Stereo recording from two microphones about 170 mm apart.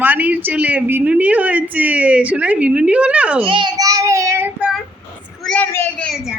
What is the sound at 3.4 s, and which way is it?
Child singing, 30° right (ahead or behind).